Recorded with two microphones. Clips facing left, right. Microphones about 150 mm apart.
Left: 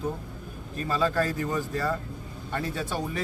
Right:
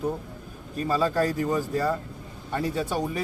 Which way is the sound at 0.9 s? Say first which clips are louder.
Right 2 dB; 10° right (ahead or behind).